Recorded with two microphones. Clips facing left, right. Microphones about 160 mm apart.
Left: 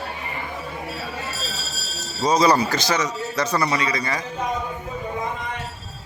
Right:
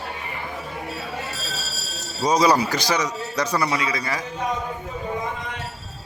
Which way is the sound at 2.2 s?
10° right (ahead or behind).